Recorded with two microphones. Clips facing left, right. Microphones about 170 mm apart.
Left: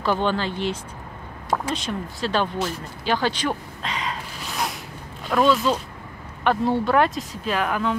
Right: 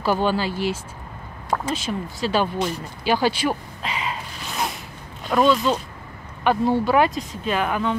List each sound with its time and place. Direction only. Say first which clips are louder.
0.0 s speech: right 1 dB; 5° right (ahead or behind)